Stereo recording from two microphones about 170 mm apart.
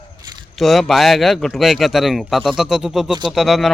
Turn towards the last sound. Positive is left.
turn(degrees=0)  # may be behind; listen again after turning